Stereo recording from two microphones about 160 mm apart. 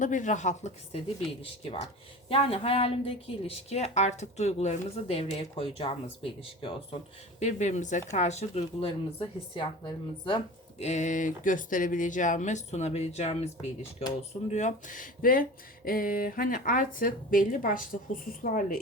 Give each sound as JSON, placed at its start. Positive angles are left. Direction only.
{"t": 0.0, "sound": "speech", "side_deg": 50}
{"t": 2.3, "sound": "a woman's voice", "side_deg": 35}
{"t": 7.3, "sound": "a woman's voice", "side_deg": 45}
{"t": 10.8, "sound": "speech", "side_deg": 45}